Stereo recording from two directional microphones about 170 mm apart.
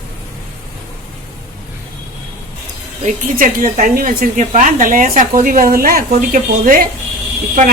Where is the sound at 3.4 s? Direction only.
50° right (ahead or behind).